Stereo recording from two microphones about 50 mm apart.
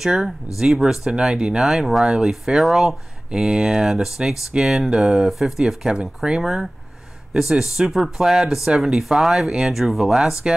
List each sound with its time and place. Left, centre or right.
0.0 s speech: centre
3.3 s speech: centre
6.4 s speech: centre